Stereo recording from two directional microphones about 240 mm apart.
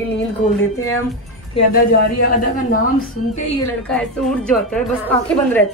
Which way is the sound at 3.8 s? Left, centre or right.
Centre.